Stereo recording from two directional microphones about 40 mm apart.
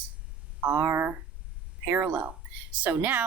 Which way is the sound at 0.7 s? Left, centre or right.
Right.